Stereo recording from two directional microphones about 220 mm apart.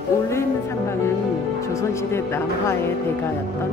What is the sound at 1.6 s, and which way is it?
Speech, 15° left (ahead or behind).